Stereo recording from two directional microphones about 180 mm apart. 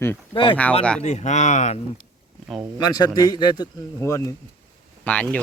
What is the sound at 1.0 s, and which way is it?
Speech, 40° left (ahead or behind).